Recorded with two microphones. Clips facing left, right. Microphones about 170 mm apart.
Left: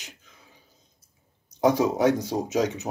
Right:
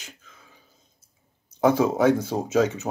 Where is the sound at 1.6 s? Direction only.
15° left (ahead or behind).